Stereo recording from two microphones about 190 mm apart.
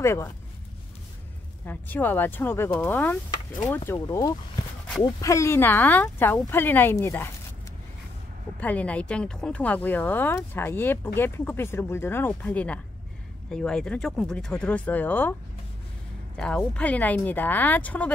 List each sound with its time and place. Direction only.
0.0 s speech: 15° left (ahead or behind)
1.7 s speech: 10° left (ahead or behind)
8.5 s speech: 10° left (ahead or behind)
16.3 s speech: 5° left (ahead or behind)